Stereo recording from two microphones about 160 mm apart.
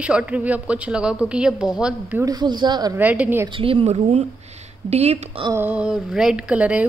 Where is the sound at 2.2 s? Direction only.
25° right (ahead or behind).